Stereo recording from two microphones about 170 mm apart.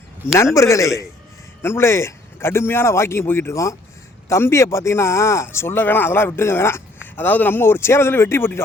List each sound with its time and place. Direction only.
0.5 s speech: 20° left (ahead or behind)